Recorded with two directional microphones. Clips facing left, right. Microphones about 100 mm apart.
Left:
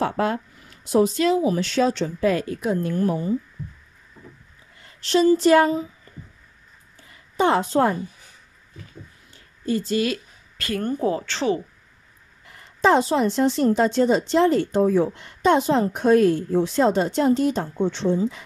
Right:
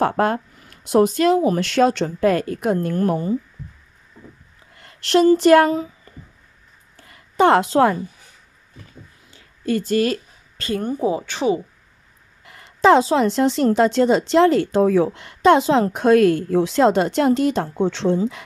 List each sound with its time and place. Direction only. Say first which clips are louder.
0.0 s speech: right 4 dB; 50° right (ahead or behind)
4.7 s speech: right 3 dB; 65° right (ahead or behind)
7.1 s a woman's voice: right 5 dB; 65° right (ahead or behind); by 8.0 s 90° right
9.7 s speech: right 3 dB; 55° right (ahead or behind)
10.8 s speech: right 1 dB; 10° right (ahead or behind)
12.4 s speech: right 4 dB; 90° right